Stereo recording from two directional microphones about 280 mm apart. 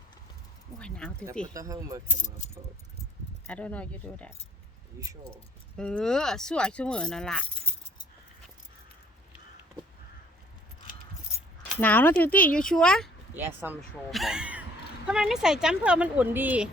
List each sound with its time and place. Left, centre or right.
0.8 s speech: centre
1.5 s speech: centre
2.0 s speech: left
3.4 s speech: centre
5.7 s speech: centre
11.8 s speech: centre